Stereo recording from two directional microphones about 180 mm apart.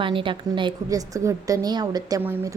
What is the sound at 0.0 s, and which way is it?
A woman's voice, 30° right (ahead or behind).